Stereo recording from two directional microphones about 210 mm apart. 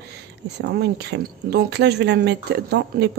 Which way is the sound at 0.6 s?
50° right (ahead or behind).